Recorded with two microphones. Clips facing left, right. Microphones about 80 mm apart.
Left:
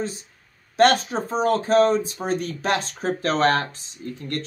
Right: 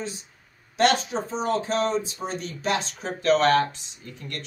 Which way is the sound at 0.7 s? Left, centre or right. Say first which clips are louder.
Left 4 dB; left.